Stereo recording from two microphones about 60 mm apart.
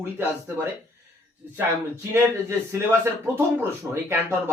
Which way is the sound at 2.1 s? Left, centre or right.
Right.